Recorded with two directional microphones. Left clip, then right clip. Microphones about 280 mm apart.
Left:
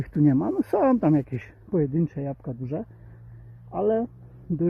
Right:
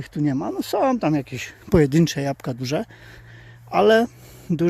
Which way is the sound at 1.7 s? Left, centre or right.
Right.